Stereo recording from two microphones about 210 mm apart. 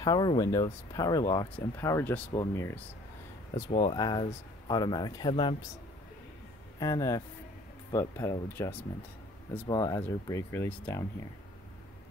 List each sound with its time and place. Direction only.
0.0 s speech: 20° left (ahead or behind)
6.8 s speech: 15° left (ahead or behind)